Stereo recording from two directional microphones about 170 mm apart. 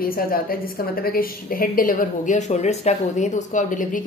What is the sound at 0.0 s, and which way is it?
A woman's voice, 60° left (ahead or behind).